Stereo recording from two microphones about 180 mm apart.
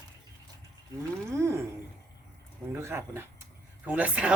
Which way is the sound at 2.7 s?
15° right (ahead or behind).